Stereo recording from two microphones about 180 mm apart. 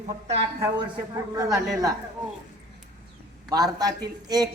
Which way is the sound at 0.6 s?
20° right (ahead or behind).